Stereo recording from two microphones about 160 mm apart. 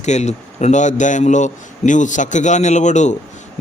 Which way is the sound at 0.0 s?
45° left (ahead or behind).